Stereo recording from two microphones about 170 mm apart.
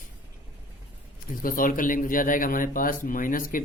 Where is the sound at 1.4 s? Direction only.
55° left (ahead or behind).